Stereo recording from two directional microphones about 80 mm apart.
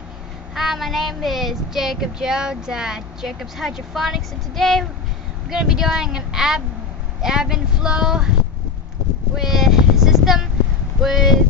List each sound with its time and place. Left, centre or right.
0.6 s child singing: centre
5.5 s speech: centre
9.4 s a sound: centre
11.0 s child singing: centre